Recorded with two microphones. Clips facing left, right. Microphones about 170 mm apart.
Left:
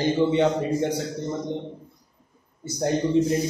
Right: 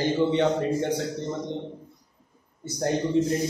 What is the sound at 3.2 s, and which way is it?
Speech, 20° left (ahead or behind).